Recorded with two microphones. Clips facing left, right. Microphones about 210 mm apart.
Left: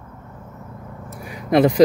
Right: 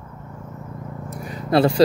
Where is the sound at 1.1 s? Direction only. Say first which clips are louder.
Left 2 dB; 10° left (ahead or behind).